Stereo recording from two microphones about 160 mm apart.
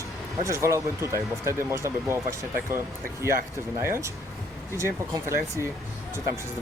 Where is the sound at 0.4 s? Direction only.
20° right (ahead or behind).